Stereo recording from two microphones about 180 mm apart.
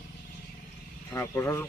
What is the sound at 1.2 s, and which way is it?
Speech, 15° left (ahead or behind).